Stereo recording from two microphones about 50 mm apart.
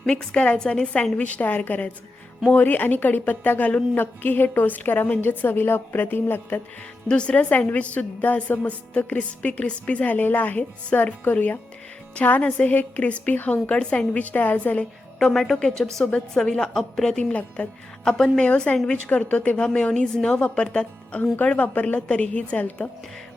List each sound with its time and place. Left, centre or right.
0.0 s a woman's voice: centre; by 6.6 s left
7.1 s a woman's voice: centre
13.7 s a woman's voice: centre
15.2 s a woman's voice: centre
17.6 s speech: left